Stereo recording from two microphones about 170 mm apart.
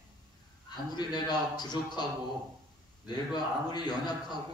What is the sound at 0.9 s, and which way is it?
A man's voice, 25° left (ahead or behind).